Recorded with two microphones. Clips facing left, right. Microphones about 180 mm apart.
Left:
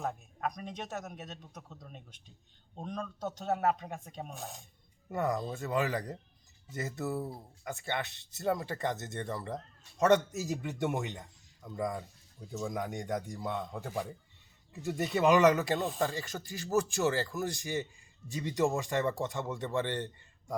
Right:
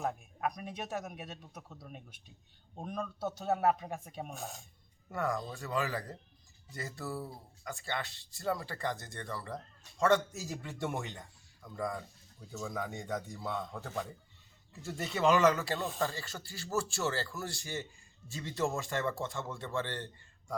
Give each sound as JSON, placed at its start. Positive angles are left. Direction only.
{"t": 0.0, "sound": "speech", "side_deg": -5}
{"t": 5.0, "sound": "speech", "side_deg": 20}